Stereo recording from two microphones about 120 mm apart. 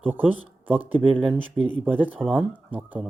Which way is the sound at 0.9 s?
15° right (ahead or behind).